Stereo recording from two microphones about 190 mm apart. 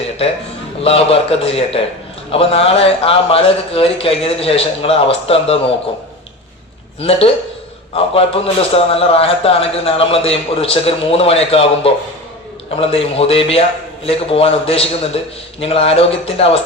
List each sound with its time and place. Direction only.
0.9 s a man's voice: 30° left (ahead or behind)
7.0 s a man's voice: 30° left (ahead or behind)